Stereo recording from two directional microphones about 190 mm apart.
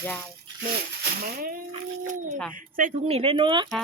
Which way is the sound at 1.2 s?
50° right (ahead or behind).